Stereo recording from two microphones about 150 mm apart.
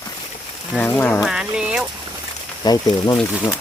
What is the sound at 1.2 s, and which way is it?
Speech, 5° right (ahead or behind).